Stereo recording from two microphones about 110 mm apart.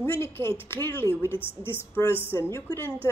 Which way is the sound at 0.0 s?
20° left (ahead or behind).